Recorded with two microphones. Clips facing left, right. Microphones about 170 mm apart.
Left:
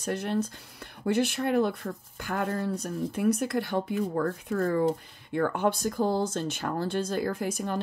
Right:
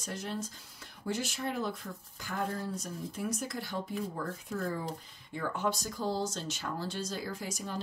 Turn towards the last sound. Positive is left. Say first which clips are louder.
# left 9 dB
turn(degrees=60)  # may be behind; listen again after turning